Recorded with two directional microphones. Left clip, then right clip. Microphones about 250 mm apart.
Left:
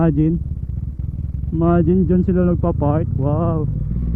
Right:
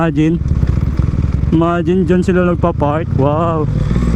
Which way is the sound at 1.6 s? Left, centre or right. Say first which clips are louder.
Right 2 dB; centre.